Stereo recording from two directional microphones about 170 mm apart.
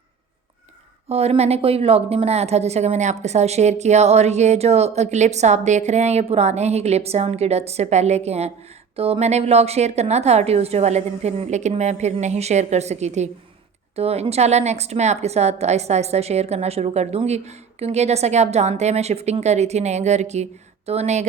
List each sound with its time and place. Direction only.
1.0 s a woman's voice: 35° right (ahead or behind)